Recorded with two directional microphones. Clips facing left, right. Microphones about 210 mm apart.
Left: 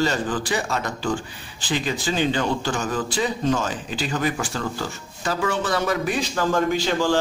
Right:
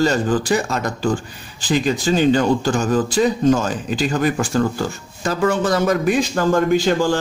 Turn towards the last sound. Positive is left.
turn(degrees=-45)  # may be behind; listen again after turning